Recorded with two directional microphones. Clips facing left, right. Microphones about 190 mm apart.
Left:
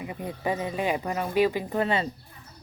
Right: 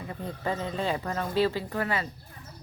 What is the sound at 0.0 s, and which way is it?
Speech, 15° left (ahead or behind).